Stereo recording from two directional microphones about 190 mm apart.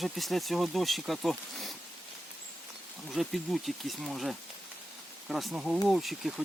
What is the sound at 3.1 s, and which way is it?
Speech, centre (ahead or behind).